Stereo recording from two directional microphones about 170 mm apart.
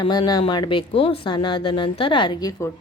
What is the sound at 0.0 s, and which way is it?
A woman's voice, 25° left (ahead or behind).